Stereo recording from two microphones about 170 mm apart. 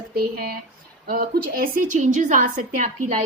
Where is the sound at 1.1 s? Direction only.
60° right (ahead or behind).